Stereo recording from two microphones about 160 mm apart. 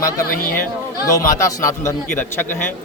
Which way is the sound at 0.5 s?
15° left (ahead or behind).